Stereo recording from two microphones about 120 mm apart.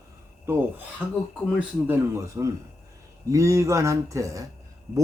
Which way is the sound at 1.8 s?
25° right (ahead or behind).